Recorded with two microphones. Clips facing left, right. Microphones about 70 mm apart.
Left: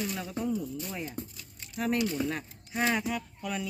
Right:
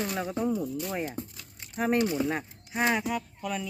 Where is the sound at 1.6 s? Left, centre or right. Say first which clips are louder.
Right 3 dB; right.